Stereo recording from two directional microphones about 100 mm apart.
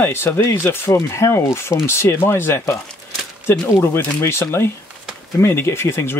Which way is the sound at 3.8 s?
25° left (ahead or behind).